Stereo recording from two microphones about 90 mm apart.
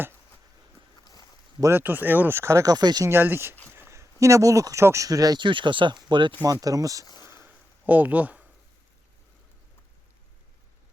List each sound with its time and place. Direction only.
1.0 s a sound: 45° left (ahead or behind)
1.7 s speech: 20° right (ahead or behind)
2.7 s speech: 50° right (ahead or behind)
3.1 s speech: 25° right (ahead or behind); by 5.4 s 45° right (ahead or behind)
5.4 s speech: 65° right (ahead or behind)
6.4 s speech: 40° right (ahead or behind)
7.0 s speech: 50° left (ahead or behind)
7.4 s a sound: 20° right (ahead or behind)